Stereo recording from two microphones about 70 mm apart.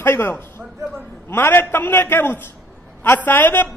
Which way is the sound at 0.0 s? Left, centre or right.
Left.